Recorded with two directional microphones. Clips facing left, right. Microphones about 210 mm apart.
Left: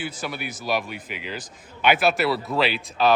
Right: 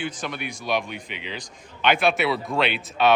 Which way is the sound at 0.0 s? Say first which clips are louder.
Right 1 dB; 5° left (ahead or behind).